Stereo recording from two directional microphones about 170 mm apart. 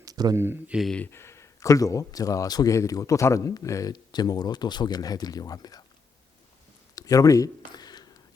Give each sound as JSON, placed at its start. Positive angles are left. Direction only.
{"t": 0.0, "sound": "speech", "side_deg": -20}
{"t": 0.8, "sound": "speech", "side_deg": 5}
{"t": 6.9, "sound": "a sound", "side_deg": 20}